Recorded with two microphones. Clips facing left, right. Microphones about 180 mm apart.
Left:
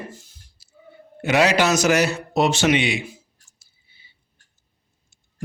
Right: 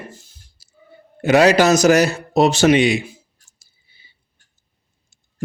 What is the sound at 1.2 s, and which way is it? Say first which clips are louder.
A man's voice: right 5 dB; 40° right (ahead or behind).